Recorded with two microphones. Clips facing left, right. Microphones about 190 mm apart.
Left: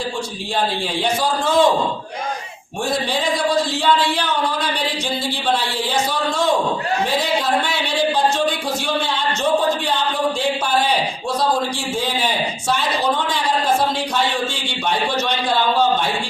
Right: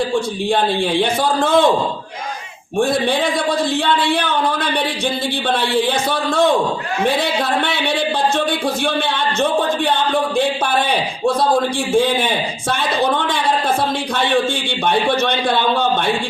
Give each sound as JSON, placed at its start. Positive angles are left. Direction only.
{"t": 1.2, "sound": "a man's voice", "side_deg": -55}
{"t": 4.0, "sound": "a man's voice", "side_deg": -55}
{"t": 13.0, "sound": "a man's voice", "side_deg": -55}
{"t": 14.8, "sound": "a man's voice", "side_deg": -55}